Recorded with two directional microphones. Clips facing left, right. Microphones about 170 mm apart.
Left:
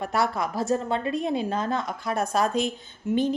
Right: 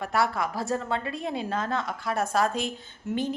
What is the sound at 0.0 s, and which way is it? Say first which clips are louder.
A woman's voice: left 1 dB; 20° left (ahead or behind).